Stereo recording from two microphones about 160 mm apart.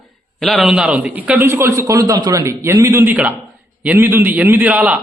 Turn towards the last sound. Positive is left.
turn(degrees=-10)  # may be behind; listen again after turning